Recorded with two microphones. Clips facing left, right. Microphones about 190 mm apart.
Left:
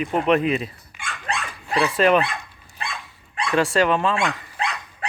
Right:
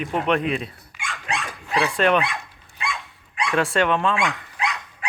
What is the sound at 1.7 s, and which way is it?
Speech, centre (ahead or behind).